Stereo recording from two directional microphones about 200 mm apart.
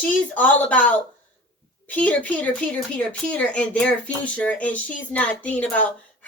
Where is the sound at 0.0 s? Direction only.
5° left (ahead or behind).